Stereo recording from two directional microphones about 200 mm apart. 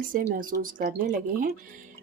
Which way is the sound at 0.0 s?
45° right (ahead or behind).